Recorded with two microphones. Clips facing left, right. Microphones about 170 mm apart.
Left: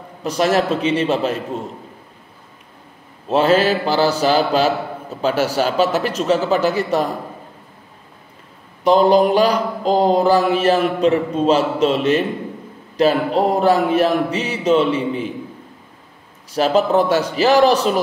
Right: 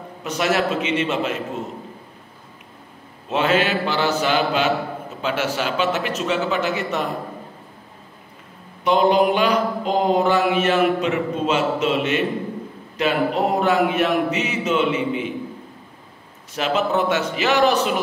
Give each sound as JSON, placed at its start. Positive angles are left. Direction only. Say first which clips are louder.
{"t": 0.2, "sound": "mantra", "louder": "left 4 dB", "side_deg": 35}
{"t": 3.3, "sound": "mantra", "louder": "left 5 dB", "side_deg": 35}
{"t": 8.8, "sound": "mantra", "louder": "left 4 dB", "side_deg": 35}
{"t": 16.5, "sound": "mantra", "louder": "left 6 dB", "side_deg": 35}